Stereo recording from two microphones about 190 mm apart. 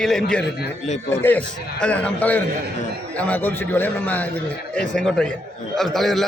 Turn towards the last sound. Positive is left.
turn(degrees=0)  # may be behind; listen again after turning